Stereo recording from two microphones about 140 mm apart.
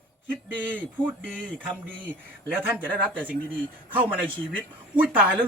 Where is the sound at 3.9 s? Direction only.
10° right (ahead or behind).